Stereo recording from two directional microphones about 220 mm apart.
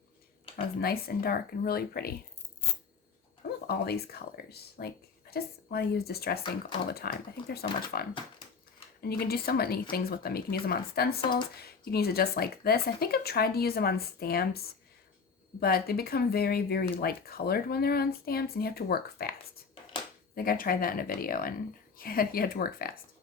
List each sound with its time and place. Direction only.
0.5 s speech: 45° left (ahead or behind)
3.7 s speech: 45° left (ahead or behind)
15.6 s speech: 45° left (ahead or behind)
20.3 s speech: 40° left (ahead or behind)